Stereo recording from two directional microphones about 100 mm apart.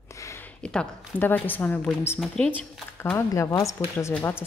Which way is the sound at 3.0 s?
25° left (ahead or behind).